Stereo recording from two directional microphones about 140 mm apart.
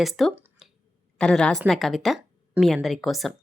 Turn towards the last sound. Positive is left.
turn(degrees=0)  # may be behind; listen again after turning